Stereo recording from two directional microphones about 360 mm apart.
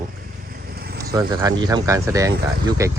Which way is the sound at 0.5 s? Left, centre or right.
Right.